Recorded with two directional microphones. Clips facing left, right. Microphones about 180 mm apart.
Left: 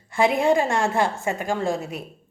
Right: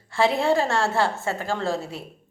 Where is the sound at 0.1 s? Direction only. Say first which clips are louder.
Left 2 dB; 15° left (ahead or behind).